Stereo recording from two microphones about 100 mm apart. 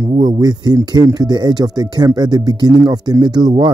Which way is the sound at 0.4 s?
40° right (ahead or behind).